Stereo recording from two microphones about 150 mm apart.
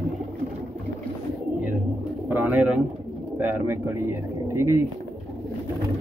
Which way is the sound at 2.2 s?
10° right (ahead or behind).